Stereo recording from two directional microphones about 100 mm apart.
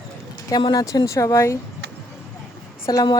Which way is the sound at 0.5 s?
45° left (ahead or behind).